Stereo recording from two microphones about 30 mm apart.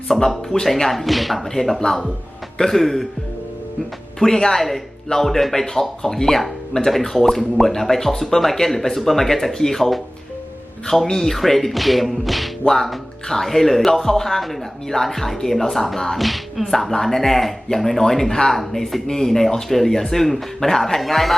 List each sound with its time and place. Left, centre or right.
0.1 s speech: centre
4.2 s speech: centre
16.1 s music: centre
16.7 s speech: centre